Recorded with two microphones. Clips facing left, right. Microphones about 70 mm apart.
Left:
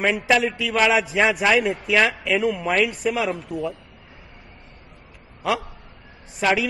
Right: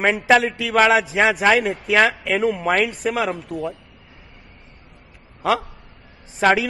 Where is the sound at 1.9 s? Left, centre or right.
Right.